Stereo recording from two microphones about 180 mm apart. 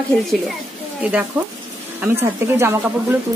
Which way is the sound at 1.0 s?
5° right (ahead or behind).